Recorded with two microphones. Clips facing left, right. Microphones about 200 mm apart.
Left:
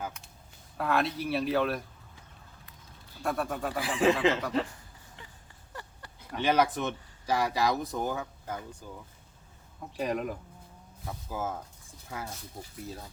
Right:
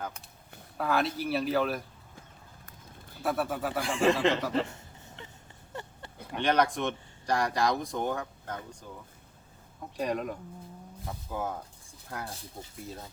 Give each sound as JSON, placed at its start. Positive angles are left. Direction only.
{"t": 0.8, "sound": "speech", "side_deg": 0}
{"t": 3.2, "sound": "speech", "side_deg": -5}
{"t": 4.6, "sound": "a sound", "side_deg": -25}
{"t": 6.3, "sound": "speech", "side_deg": 5}
{"t": 10.0, "sound": "speech", "side_deg": 0}